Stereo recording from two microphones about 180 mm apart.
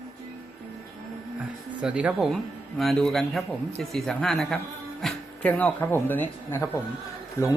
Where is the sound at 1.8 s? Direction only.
5° right (ahead or behind).